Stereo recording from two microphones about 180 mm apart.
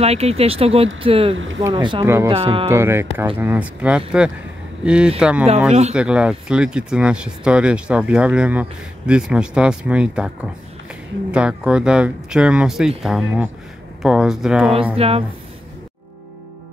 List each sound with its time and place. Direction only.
0.0 s speech: 35° right (ahead or behind)
1.3 s speech: 90° right
1.6 s speech: 25° right (ahead or behind)
2.7 s speech: 15° right (ahead or behind)
11.3 s speech: 5° right (ahead or behind)
15.0 s speech: 35° right (ahead or behind)